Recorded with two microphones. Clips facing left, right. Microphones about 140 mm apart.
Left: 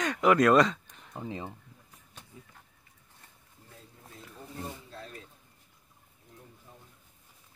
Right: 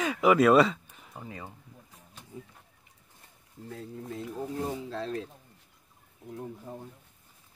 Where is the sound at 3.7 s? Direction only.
70° right (ahead or behind); by 5.2 s 90° right.